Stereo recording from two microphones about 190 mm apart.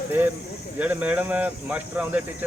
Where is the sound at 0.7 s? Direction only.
10° right (ahead or behind).